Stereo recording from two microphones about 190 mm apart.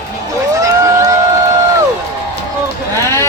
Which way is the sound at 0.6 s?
15° right (ahead or behind).